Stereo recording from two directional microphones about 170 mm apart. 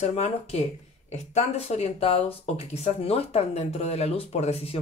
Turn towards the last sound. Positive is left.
turn(degrees=40)  # may be behind; listen again after turning